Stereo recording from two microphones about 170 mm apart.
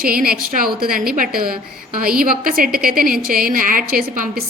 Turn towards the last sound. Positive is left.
turn(degrees=-55)  # may be behind; listen again after turning